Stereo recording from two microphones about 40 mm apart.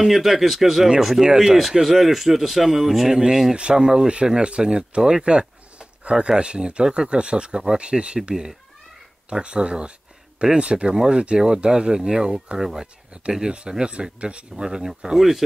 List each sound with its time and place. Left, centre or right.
0.1 s speech: centre
1.6 s speech: centre
3.5 s speech: right
9.3 s speech: right
12.8 s speech: right
14.6 s speech: centre